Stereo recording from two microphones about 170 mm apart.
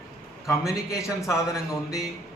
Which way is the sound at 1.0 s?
15° left (ahead or behind).